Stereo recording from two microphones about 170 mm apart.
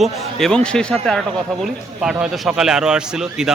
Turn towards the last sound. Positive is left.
turn(degrees=-5)  # may be behind; listen again after turning